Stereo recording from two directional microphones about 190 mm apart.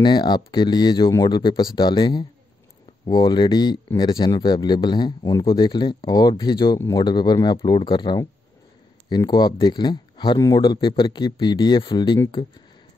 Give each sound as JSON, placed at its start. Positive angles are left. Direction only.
{"t": 0.0, "sound": "speech", "side_deg": 25}